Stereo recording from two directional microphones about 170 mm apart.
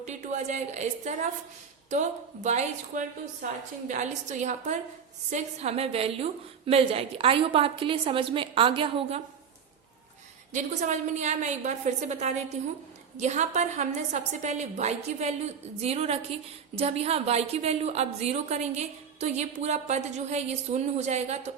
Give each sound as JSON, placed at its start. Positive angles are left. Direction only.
{"t": 0.0, "sound": "a woman's voice", "side_deg": -45}
{"t": 10.5, "sound": "a woman's voice", "side_deg": -45}